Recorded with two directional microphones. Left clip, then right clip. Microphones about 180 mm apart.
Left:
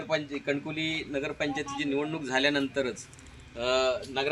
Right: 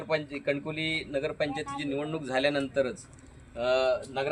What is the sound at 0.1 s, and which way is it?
A man's voice, 45° right (ahead or behind).